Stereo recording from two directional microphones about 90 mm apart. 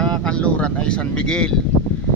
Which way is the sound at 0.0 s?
10° left (ahead or behind).